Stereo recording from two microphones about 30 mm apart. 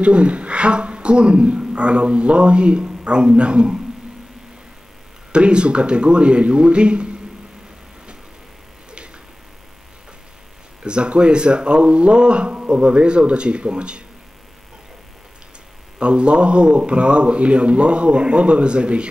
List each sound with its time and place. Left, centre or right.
0.0 s speech: right
5.3 s speech: right
10.8 s speech: right
16.0 s speech: right